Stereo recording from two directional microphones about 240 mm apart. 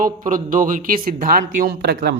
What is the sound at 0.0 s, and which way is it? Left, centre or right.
Speech, right.